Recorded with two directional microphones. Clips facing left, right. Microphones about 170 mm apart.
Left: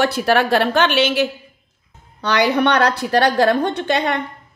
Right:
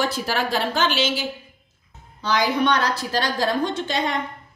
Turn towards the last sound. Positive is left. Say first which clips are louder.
# left 5 dB
turn(degrees=65)  # may be behind; listen again after turning